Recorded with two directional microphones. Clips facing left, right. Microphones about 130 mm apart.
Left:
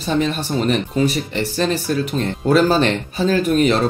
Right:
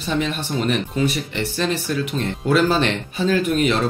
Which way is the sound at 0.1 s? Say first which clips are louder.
Left 4 dB; 40° left (ahead or behind).